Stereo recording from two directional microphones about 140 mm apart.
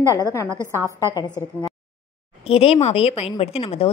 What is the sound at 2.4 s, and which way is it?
A woman's voice, 45° left (ahead or behind).